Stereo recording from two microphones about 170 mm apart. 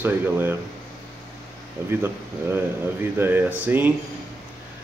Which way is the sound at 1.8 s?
15° right (ahead or behind).